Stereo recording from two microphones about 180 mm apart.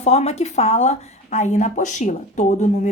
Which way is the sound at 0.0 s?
35° left (ahead or behind).